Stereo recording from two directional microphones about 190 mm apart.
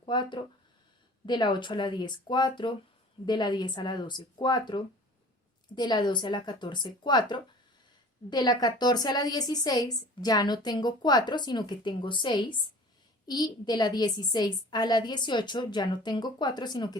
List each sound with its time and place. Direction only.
0.0 s a woman's voice: 25° left (ahead or behind)